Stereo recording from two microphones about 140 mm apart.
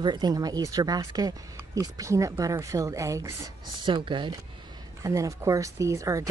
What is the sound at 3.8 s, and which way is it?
Speech, 35° right (ahead or behind).